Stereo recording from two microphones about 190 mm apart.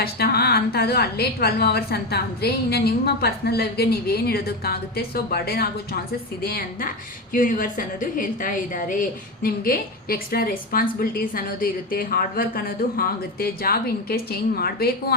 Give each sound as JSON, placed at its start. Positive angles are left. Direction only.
{"t": 0.0, "sound": "a woman's voice", "side_deg": 55}